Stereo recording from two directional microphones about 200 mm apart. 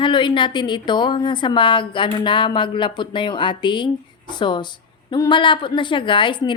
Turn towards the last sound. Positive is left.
turn(degrees=25)  # may be behind; listen again after turning